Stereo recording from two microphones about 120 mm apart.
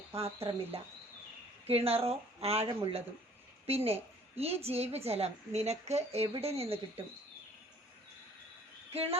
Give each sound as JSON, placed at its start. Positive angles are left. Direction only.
{"t": 0.1, "sound": "a woman's voice", "side_deg": -55}
{"t": 8.9, "sound": "speech", "side_deg": -55}